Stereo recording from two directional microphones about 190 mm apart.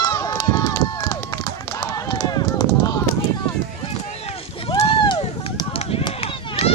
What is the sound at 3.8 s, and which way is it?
Run, 30° left (ahead or behind).